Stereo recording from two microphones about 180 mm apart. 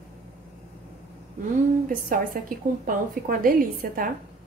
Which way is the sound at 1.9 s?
50° right (ahead or behind).